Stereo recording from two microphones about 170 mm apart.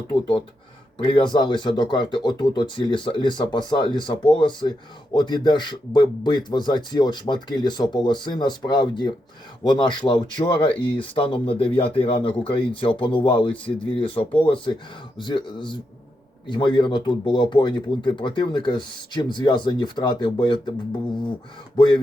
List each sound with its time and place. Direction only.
0.1 s speech: 30° left (ahead or behind)
21.8 s speech: 30° left (ahead or behind)